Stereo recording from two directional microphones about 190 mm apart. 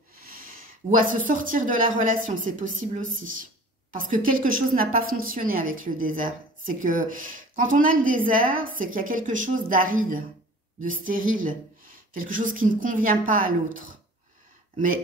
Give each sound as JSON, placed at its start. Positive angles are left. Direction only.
{"t": 0.2, "sound": "a sound", "side_deg": -50}
{"t": 0.9, "sound": "a woman's voice", "side_deg": -45}
{"t": 3.9, "sound": "a woman's voice", "side_deg": -45}